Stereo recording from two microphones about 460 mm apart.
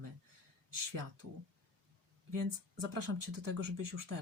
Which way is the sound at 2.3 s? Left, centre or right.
Right.